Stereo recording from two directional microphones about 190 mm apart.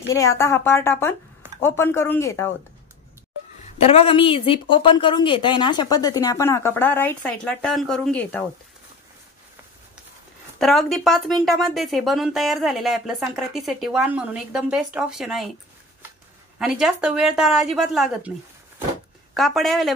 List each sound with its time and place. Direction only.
0.4 s speech: 15° left (ahead or behind)
3.6 s speech: 30° left (ahead or behind); by 8.5 s 10° left (ahead or behind)
10.6 s speech: centre (ahead or behind)
16.5 s speech: 5° right (ahead or behind)
19.3 s speech: centre (ahead or behind)